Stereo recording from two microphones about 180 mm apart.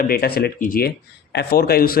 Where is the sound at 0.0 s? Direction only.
55° left (ahead or behind).